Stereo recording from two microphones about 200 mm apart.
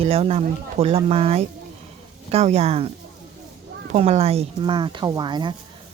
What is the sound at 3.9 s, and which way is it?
Speech, 30° right (ahead or behind).